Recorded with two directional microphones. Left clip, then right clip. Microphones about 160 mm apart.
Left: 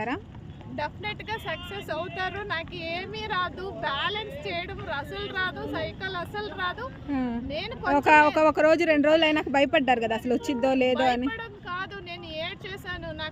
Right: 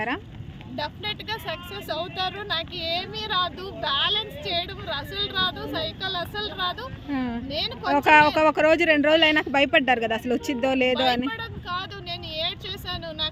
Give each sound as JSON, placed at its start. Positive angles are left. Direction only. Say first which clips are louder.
{"t": 0.8, "sound": "speech", "louder": "right 2 dB", "side_deg": 10}
{"t": 7.1, "sound": "speech", "louder": "right 1 dB", "side_deg": 0}
{"t": 7.4, "sound": "speech", "louder": "right 3 dB", "side_deg": 10}
{"t": 7.9, "sound": "speech", "louder": "right 2 dB", "side_deg": 0}
{"t": 11.3, "sound": "vehicle", "louder": "right 3 dB", "side_deg": 10}
{"t": 12.3, "sound": "a sound", "louder": "right 5 dB", "side_deg": 15}